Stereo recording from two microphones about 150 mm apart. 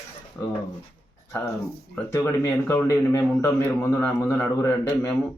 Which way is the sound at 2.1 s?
15° left (ahead or behind).